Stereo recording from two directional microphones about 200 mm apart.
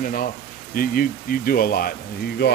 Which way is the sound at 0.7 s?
45° left (ahead or behind).